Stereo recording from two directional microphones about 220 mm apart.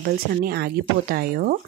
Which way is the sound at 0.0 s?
45° right (ahead or behind).